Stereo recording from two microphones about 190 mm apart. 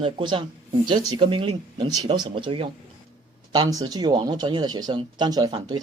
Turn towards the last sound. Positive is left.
turn(degrees=-20)  # may be behind; listen again after turning